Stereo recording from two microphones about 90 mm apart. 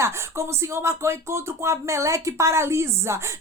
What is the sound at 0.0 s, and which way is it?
Speech, 30° right (ahead or behind).